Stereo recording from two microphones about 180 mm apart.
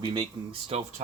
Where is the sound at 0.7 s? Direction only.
35° right (ahead or behind).